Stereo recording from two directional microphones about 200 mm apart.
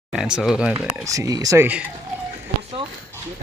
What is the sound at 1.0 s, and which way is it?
Speech, 15° right (ahead or behind).